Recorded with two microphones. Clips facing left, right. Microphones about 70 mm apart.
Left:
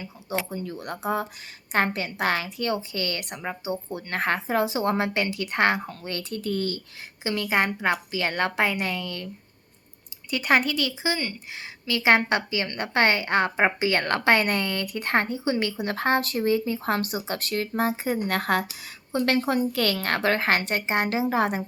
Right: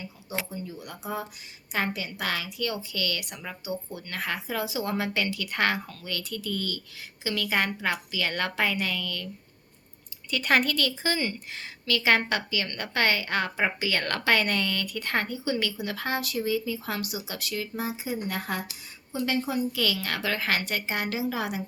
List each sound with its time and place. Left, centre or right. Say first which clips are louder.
0.6 s speech: left 7 dB; left
2.1 s a woman's voice: left 5 dB; left
7.3 s a woman's voice: left 3 dB; left
10.2 s a woman's voice: left 2 dB; centre
11.9 s a woman's voice: left 3 dB; left